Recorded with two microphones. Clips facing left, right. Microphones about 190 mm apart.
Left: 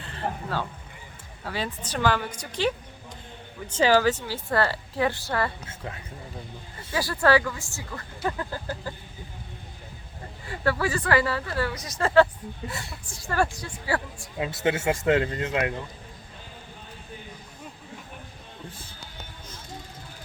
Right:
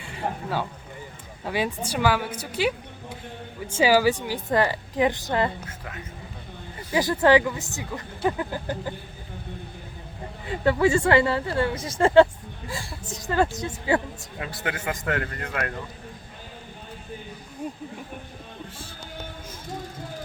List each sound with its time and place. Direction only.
0.0 s a woman's voice: 10° right (ahead or behind)
5.6 s a man's voice: 25° left (ahead or behind)
6.9 s speech: 20° right (ahead or behind)
10.5 s speech: 20° right (ahead or behind)
14.3 s a man's voice: 20° left (ahead or behind)